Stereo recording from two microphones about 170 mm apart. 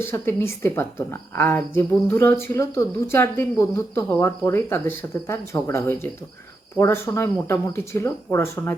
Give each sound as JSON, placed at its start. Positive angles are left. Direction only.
{"t": 0.0, "sound": "a woman's voice", "side_deg": 15}